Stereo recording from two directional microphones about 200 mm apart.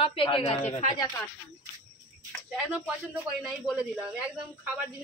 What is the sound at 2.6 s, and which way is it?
Speech, 5° right (ahead or behind).